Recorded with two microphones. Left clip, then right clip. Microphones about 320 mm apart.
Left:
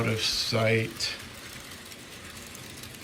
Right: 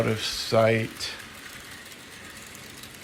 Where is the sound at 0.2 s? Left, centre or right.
Centre.